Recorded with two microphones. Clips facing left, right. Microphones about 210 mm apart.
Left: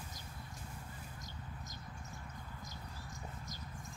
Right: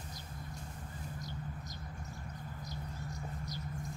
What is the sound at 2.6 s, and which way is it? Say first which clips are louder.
Mouse: right 6 dB; 45° left (ahead or behind).